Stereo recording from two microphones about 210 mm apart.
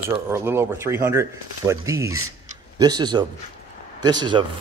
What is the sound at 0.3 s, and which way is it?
Speech, 10° right (ahead or behind).